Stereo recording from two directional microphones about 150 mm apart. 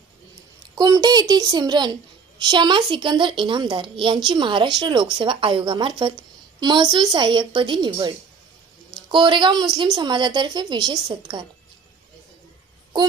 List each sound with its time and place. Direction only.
0.8 s a woman's voice: 25° right (ahead or behind)